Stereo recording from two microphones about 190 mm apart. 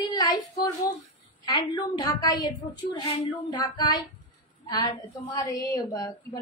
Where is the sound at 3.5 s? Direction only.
20° left (ahead or behind).